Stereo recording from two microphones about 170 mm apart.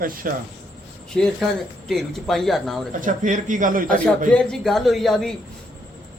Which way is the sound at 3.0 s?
50° right (ahead or behind).